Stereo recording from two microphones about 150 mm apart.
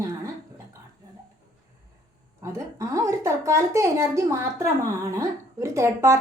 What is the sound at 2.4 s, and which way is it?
A woman's voice, 20° right (ahead or behind).